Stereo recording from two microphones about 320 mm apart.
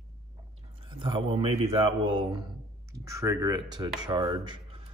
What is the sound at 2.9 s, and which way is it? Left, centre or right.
Speech, centre.